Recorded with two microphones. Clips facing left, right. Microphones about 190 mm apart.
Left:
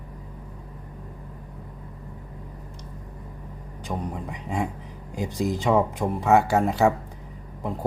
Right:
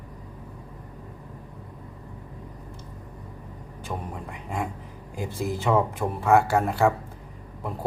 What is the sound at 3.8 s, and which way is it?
Speech, 15° left (ahead or behind).